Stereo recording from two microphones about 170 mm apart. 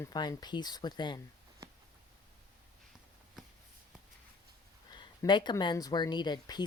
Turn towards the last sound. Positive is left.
turn(degrees=25)  # may be behind; listen again after turning